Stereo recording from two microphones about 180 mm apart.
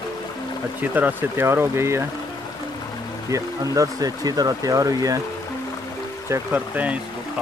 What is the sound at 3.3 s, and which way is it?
Speech, 20° right (ahead or behind).